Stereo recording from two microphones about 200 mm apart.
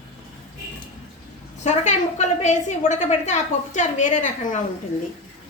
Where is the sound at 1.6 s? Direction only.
35° left (ahead or behind).